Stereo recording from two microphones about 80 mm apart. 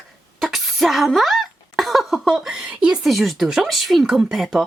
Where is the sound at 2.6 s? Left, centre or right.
Centre.